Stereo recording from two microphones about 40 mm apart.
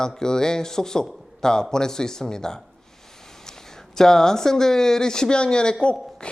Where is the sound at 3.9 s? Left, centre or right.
Centre.